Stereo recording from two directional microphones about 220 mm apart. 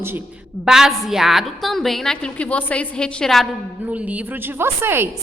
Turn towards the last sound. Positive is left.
turn(degrees=-10)  # may be behind; listen again after turning